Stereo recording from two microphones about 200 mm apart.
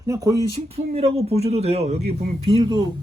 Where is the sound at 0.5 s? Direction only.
30° right (ahead or behind).